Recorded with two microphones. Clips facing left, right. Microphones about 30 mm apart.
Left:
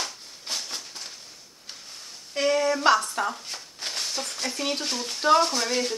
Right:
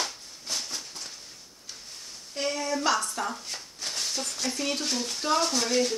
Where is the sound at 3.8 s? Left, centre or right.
Left.